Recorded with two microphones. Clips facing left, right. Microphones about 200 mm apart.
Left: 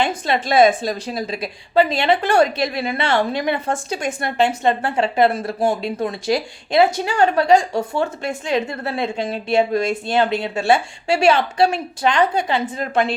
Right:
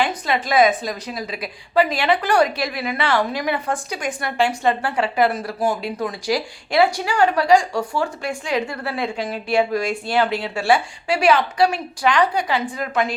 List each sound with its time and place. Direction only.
0.0 s a woman's voice: 25° left (ahead or behind)